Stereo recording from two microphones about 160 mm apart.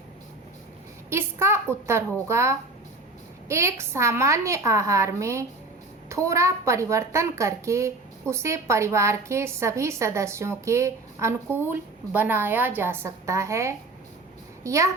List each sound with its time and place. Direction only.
1.1 s a woman's voice: 15° right (ahead or behind)